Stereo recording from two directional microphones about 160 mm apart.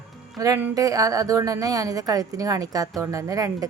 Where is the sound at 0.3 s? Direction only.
20° right (ahead or behind).